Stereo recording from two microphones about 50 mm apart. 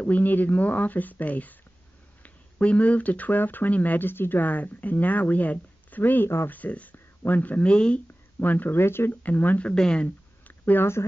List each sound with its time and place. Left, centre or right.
0.0 s speech: left
7.7 s speech: left
8.4 s speech: left
8.7 s speech: left
9.1 s speech: left
9.7 s speech: centre
10.6 s speech: left